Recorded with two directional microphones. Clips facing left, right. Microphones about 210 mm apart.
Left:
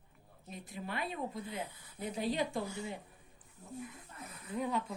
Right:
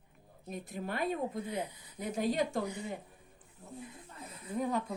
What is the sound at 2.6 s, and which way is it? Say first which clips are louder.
Speech: right 2 dB; 20° right (ahead or behind).